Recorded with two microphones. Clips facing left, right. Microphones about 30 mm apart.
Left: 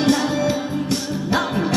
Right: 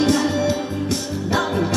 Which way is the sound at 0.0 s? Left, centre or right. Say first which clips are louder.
Even; centre.